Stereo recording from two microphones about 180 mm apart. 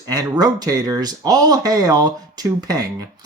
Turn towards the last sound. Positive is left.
turn(degrees=-20)  # may be behind; listen again after turning